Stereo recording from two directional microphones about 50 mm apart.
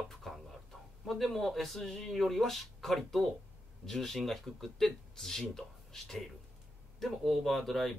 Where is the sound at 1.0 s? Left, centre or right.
Centre.